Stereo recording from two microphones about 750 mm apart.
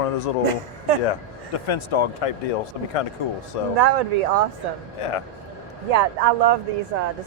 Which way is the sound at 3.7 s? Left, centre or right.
Right.